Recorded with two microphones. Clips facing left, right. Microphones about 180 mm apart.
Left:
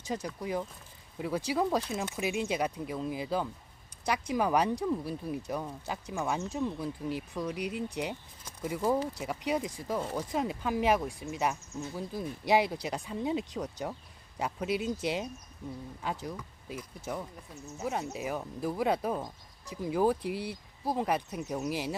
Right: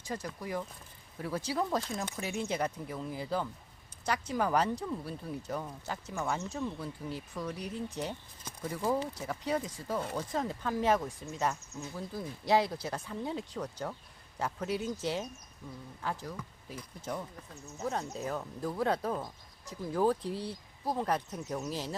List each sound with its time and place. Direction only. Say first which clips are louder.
0.0 s speech: left 3 dB; 20° left (ahead or behind)